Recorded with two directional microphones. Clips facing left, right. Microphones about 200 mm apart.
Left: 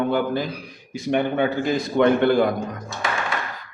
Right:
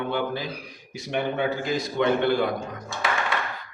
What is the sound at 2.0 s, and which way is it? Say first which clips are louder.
Speech: left 5 dB; 50° left (ahead or behind).